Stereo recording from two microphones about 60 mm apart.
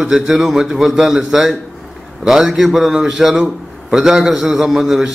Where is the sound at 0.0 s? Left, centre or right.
Centre.